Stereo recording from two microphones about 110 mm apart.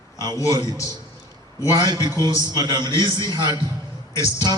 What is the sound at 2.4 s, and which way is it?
A man's voice, 35° right (ahead or behind).